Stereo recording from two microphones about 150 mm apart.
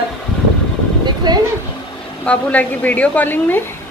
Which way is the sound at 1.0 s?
30° right (ahead or behind).